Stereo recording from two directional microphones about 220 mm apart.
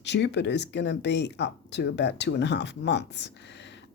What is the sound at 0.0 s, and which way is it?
Speech, 50° left (ahead or behind).